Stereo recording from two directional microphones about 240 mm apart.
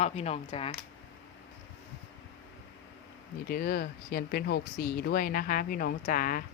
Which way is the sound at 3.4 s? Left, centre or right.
Left.